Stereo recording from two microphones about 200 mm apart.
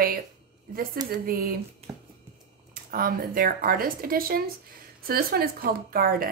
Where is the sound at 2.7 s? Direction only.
45° right (ahead or behind).